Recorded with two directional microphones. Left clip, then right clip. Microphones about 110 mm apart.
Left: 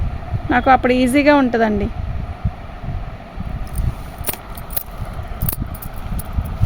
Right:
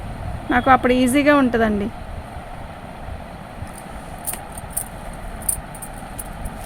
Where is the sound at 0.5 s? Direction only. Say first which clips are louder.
Left 2 dB; 50° left (ahead or behind).